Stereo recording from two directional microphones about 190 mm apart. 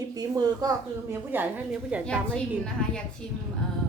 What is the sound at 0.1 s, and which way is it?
Speech, 20° right (ahead or behind).